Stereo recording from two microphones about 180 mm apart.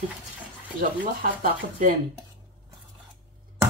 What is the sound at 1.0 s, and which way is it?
Speech, 50° right (ahead or behind).